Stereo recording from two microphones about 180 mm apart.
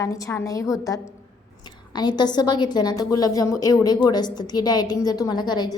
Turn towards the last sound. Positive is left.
turn(degrees=25)  # may be behind; listen again after turning